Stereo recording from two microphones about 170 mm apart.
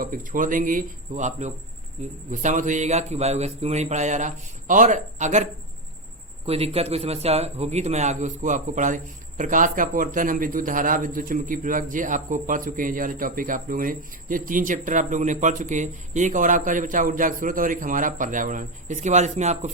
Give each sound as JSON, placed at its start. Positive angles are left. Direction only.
{"t": 0.0, "sound": "a man's voice", "side_deg": -55}